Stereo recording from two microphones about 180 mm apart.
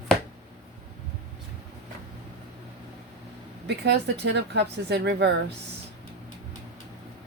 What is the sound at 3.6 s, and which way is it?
Speech, 70° right (ahead or behind).